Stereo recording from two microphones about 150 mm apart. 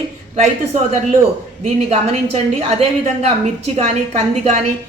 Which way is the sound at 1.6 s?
45° right (ahead or behind).